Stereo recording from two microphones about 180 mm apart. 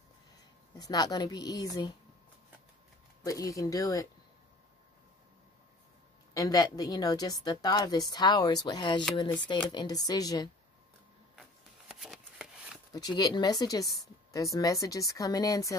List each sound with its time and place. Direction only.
0.7 s a woman's voice: 20° left (ahead or behind)
3.3 s a woman's voice: 20° left (ahead or behind)
6.3 s a woman's voice: 20° left (ahead or behind)
11.9 s a sound: 5° right (ahead or behind)
12.9 s a woman's voice: 20° left (ahead or behind)